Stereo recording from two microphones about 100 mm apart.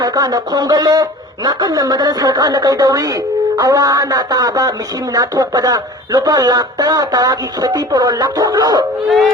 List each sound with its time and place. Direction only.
0.0 s speech: 40° right (ahead or behind)